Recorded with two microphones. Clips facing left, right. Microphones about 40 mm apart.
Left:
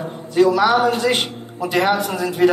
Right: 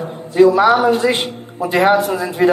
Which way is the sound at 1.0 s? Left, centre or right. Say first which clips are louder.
Right 2 dB; right.